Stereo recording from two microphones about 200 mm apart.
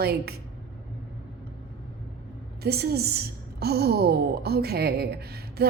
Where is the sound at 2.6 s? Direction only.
50° right (ahead or behind).